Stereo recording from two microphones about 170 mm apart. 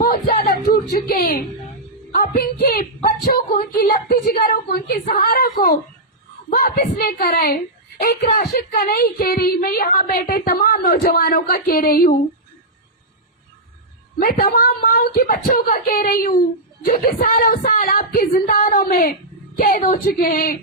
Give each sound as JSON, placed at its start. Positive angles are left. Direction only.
{"t": 0.0, "sound": "a sound", "side_deg": 60}
{"t": 2.1, "sound": "a woman's voice", "side_deg": 60}
{"t": 14.2, "sound": "a woman's voice", "side_deg": 60}